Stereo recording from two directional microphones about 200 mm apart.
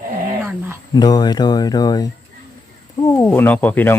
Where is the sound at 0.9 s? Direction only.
20° left (ahead or behind).